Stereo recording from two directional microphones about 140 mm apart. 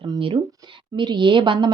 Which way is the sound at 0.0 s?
35° right (ahead or behind).